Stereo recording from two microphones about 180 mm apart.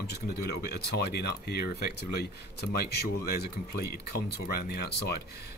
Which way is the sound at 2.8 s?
60° left (ahead or behind).